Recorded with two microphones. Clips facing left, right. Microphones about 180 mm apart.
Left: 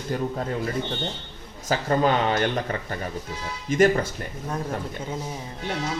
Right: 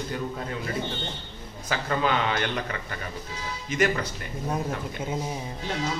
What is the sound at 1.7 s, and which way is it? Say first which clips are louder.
A man's voice: left 4 dB; 40° left (ahead or behind).